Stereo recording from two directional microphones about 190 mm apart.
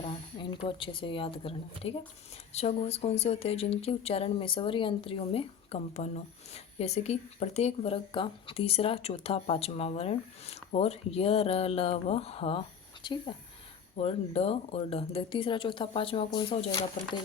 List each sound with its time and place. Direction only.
0.1 s speech: 25° left (ahead or behind)